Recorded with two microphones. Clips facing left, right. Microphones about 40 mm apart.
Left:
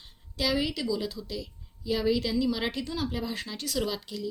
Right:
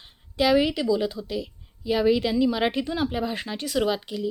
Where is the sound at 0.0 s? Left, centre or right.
Right.